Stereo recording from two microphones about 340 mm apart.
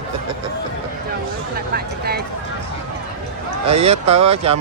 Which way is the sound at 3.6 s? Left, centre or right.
Centre.